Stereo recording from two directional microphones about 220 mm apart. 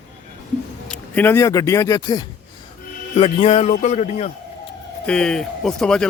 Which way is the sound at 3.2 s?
25° left (ahead or behind).